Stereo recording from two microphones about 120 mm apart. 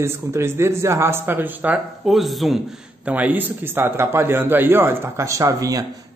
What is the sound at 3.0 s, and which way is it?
A man's voice, 10° right (ahead or behind).